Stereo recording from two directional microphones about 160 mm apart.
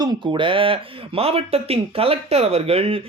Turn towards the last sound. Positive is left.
turn(degrees=-35)  # may be behind; listen again after turning